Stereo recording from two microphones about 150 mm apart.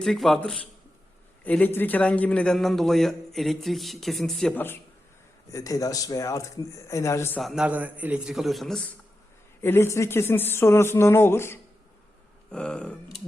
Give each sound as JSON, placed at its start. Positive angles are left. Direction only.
{"t": 0.0, "sound": "a man's voice", "side_deg": 0}
{"t": 5.5, "sound": "speech", "side_deg": 20}
{"t": 7.3, "sound": "a man's voice", "side_deg": 0}
{"t": 9.6, "sound": "speech", "side_deg": 15}
{"t": 12.5, "sound": "a man's voice", "side_deg": 5}